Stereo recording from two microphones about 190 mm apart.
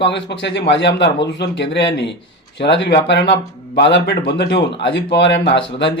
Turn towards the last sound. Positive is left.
turn(degrees=65)  # may be behind; listen again after turning